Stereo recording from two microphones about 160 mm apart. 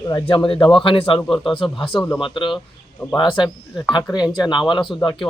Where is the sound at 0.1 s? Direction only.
30° left (ahead or behind).